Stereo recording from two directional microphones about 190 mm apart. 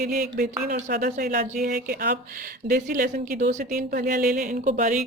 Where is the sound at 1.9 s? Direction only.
55° right (ahead or behind).